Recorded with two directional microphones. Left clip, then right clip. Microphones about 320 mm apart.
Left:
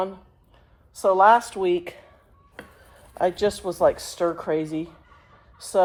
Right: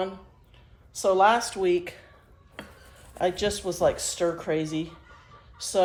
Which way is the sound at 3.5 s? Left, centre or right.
Centre.